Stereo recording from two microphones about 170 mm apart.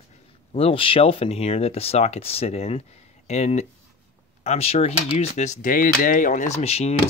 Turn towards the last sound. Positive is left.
turn(degrees=40)  # may be behind; listen again after turning